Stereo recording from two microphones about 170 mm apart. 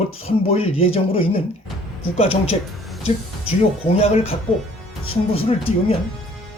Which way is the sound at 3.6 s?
35° left (ahead or behind).